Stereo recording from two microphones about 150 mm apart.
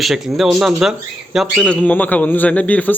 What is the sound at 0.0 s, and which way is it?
Speech, centre (ahead or behind).